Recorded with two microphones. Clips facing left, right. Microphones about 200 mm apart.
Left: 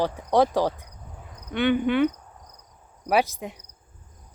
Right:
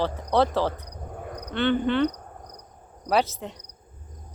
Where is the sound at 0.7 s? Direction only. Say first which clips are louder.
Right 7 dB; 55° right (ahead or behind).